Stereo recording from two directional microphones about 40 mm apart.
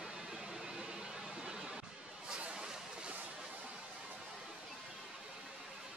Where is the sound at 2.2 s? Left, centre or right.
Right.